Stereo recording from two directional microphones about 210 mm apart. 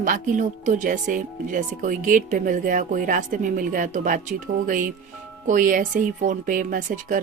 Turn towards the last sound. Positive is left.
turn(degrees=-40)  # may be behind; listen again after turning